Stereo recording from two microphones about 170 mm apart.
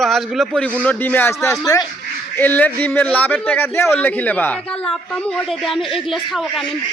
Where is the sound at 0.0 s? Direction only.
Centre (ahead or behind); by 1.9 s 20° left (ahead or behind).